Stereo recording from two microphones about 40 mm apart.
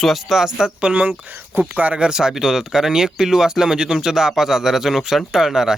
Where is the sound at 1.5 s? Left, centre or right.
Right.